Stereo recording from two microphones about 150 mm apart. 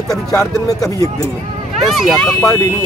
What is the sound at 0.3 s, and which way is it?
Speech, 20° left (ahead or behind).